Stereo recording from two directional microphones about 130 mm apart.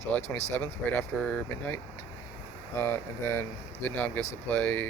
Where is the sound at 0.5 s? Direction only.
10° left (ahead or behind).